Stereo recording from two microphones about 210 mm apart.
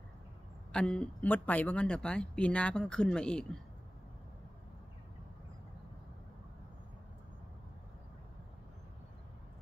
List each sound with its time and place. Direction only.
0.7 s speech: 5° left (ahead or behind)